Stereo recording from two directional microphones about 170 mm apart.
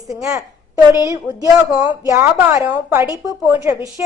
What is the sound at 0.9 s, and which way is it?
A woman's voice, 20° right (ahead or behind).